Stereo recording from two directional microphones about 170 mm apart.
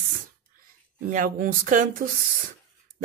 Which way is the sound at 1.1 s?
55° right (ahead or behind).